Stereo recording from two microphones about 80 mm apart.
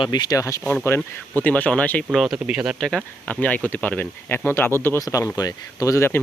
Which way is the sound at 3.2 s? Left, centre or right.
Centre.